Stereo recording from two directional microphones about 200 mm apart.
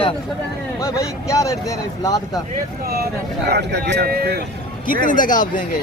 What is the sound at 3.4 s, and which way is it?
Speech, 55° right (ahead or behind).